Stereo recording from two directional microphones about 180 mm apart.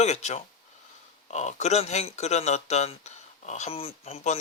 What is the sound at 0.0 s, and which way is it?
Speech, 40° left (ahead or behind).